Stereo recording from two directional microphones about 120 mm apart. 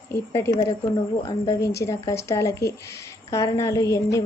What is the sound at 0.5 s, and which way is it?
Speech, 25° left (ahead or behind).